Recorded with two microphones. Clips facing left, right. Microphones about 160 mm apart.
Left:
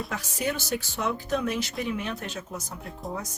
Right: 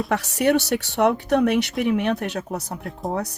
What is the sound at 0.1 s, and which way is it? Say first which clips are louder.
Speech: right 11 dB; 70° right (ahead or behind).